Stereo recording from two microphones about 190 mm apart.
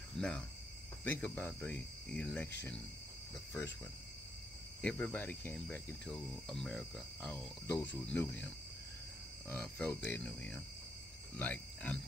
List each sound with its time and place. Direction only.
0.2 s cricket: centre (ahead or behind)
1.0 s speech: 10° left (ahead or behind)
4.8 s speech: 5° left (ahead or behind)
9.5 s speech: 5° left (ahead or behind)